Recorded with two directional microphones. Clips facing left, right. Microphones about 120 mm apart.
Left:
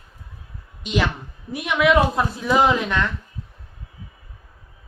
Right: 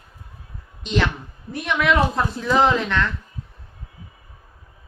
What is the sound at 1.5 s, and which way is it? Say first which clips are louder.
A woman's voice: left 2 dB; 10° left (ahead or behind).